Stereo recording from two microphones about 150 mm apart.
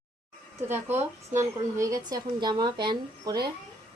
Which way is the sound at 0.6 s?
15° right (ahead or behind).